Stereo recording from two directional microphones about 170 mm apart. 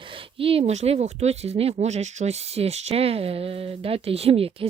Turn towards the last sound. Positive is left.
turn(degrees=-35)  # may be behind; listen again after turning